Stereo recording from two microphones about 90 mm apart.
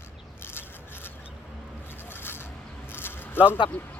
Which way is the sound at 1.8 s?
25° left (ahead or behind).